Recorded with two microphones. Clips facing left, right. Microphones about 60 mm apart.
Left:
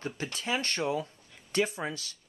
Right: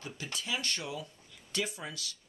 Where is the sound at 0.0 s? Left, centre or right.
Left.